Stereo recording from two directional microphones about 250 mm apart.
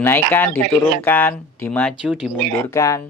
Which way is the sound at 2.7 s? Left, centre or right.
Centre.